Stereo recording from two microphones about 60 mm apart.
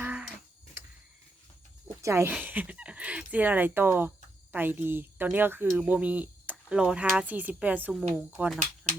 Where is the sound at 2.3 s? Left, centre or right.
Right.